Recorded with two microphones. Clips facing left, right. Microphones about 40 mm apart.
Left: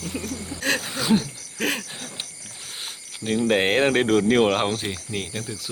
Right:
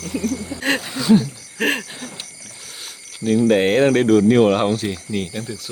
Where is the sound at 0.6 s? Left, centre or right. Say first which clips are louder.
Right 3 dB; right.